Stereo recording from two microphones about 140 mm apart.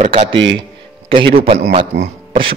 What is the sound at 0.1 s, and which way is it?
A man's voice, 40° right (ahead or behind).